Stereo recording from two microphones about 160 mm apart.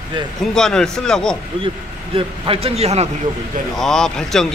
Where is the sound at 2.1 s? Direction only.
35° right (ahead or behind).